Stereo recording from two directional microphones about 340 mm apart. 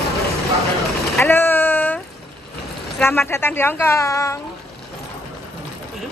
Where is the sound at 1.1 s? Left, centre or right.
Centre.